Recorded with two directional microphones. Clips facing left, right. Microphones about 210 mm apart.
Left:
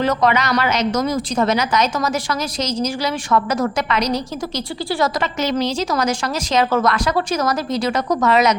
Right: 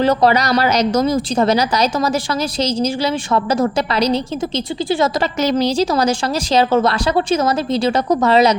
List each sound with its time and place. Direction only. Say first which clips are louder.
0.0 s a woman's voice: right 3 dB; 35° right (ahead or behind)
5.2 s a woman's voice: right 4 dB; 35° right (ahead or behind)